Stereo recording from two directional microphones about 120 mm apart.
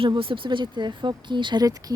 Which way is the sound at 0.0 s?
50° right (ahead or behind).